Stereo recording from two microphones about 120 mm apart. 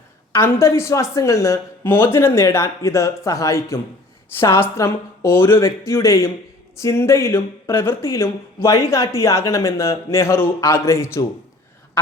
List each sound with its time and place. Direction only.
0.3 s speech: 20° left (ahead or behind)